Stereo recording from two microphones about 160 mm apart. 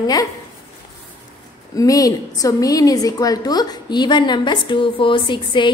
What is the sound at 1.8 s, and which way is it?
A woman's voice, 20° left (ahead or behind).